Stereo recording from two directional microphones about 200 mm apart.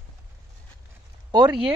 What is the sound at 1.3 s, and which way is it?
Speech, 20° right (ahead or behind).